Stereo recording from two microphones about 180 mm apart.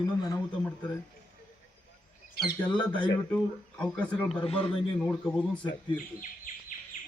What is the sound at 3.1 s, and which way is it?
A man's voice, 10° left (ahead or behind).